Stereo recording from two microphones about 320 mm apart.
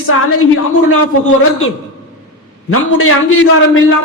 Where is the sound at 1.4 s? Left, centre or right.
Left.